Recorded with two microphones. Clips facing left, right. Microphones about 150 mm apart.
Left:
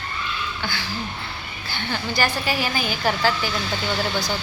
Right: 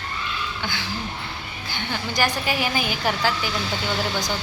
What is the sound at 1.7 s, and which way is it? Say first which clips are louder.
A woman's voice: left 2 dB; 15° right (ahead or behind).